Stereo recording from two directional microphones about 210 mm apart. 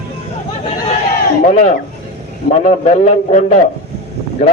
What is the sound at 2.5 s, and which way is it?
A man's voice, 30° left (ahead or behind).